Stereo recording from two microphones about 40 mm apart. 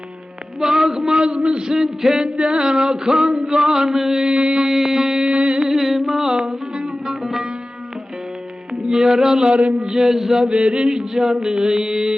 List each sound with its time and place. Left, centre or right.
0.6 s a sound: centre
1.2 s a man's voice: right
1.7 s music: centre
2.2 s music: right
4.4 s a man's voice: right
4.7 s music: centre
5.3 s a sound: right
5.6 s a sound: centre
6.3 s music: centre
8.9 s music: centre
9.9 s music: centre
10.4 s music: right